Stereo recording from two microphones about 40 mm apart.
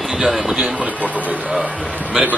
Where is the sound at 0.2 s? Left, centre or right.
Centre.